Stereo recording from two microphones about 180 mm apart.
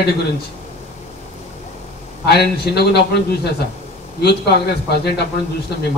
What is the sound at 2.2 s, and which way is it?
Speech, 65° left (ahead or behind).